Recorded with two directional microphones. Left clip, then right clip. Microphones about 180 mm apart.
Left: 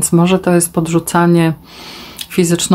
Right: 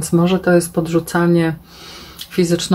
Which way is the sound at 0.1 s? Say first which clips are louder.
Left 1 dB; 35° left (ahead or behind).